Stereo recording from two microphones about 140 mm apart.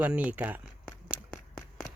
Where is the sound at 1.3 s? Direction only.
10° left (ahead or behind).